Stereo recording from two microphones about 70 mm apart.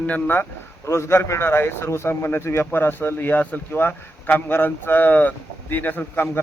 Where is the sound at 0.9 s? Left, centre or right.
Left.